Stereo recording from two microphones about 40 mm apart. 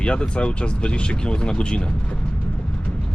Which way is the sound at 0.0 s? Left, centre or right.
Left.